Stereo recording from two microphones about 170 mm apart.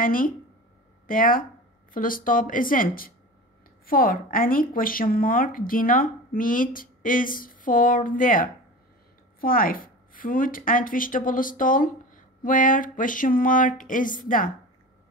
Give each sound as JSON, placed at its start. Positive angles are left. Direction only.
{"t": 0.0, "sound": "a woman's voice", "side_deg": 55}